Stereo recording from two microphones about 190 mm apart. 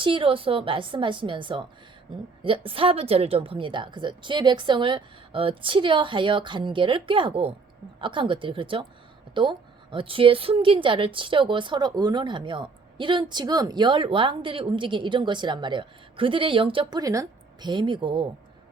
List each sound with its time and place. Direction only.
0.0 s speech: 25° right (ahead or behind)